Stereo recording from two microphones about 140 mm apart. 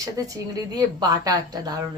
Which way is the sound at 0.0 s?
25° right (ahead or behind).